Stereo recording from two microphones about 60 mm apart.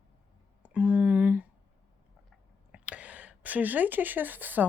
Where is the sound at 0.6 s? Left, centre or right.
Right.